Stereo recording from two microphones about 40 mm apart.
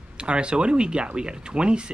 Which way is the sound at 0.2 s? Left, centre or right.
Right.